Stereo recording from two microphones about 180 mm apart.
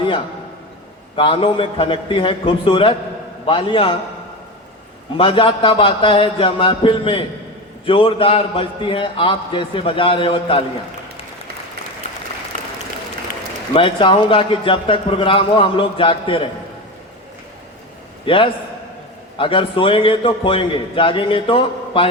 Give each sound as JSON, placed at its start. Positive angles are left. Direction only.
{"t": 1.1, "sound": "a man's voice", "side_deg": 30}
{"t": 5.1, "sound": "a man's voice", "side_deg": 30}
{"t": 13.7, "sound": "a man's voice", "side_deg": 30}
{"t": 18.3, "sound": "a man's voice", "side_deg": 30}